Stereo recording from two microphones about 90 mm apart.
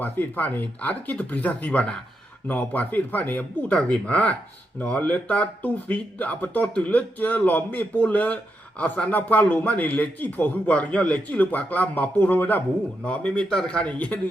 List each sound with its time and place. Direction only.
0.0 s a man's voice: 20° left (ahead or behind)